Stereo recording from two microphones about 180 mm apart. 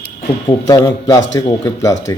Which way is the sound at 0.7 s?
20° left (ahead or behind).